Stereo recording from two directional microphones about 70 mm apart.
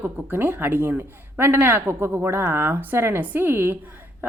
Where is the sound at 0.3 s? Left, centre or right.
Right.